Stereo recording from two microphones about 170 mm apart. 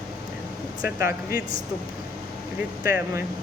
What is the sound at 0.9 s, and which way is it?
Speech, 15° right (ahead or behind).